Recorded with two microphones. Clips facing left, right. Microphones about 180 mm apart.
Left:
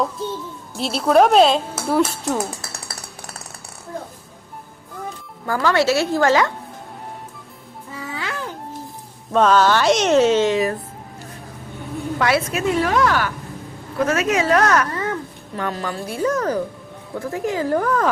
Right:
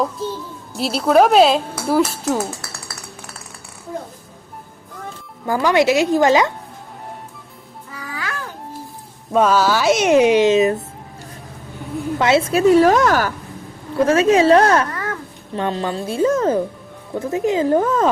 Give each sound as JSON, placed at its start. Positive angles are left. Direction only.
{"t": 0.0, "sound": "a sound", "side_deg": 0}
{"t": 0.8, "sound": "speech", "side_deg": -5}
{"t": 5.5, "sound": "speech", "side_deg": -15}
{"t": 7.9, "sound": "music", "side_deg": 25}
{"t": 9.3, "sound": "speech", "side_deg": -10}
{"t": 12.2, "sound": "a woman's voice", "side_deg": -25}
{"t": 14.0, "sound": "speech", "side_deg": -30}
{"t": 14.8, "sound": "a sound", "side_deg": 20}
{"t": 15.5, "sound": "speech", "side_deg": -25}